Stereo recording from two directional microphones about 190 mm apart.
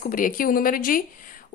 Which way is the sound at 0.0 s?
50° left (ahead or behind).